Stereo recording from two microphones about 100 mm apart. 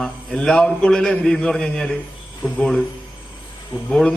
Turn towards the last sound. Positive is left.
turn(degrees=10)  # may be behind; listen again after turning